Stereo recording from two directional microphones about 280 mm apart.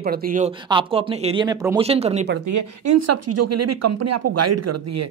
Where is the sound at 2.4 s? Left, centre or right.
Right.